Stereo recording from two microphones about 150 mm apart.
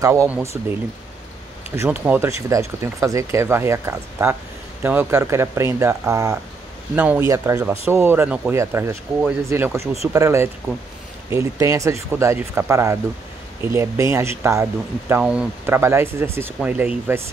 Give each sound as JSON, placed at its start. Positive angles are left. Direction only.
{"t": 0.0, "sound": "speech", "side_deg": -20}
{"t": 1.8, "sound": "speech", "side_deg": -10}